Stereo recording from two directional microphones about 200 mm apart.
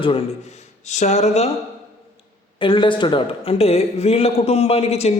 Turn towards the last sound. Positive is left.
turn(degrees=30)  # may be behind; listen again after turning